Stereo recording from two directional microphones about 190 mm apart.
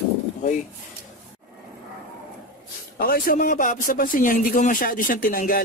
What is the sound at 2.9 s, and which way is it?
Speech, 50° left (ahead or behind).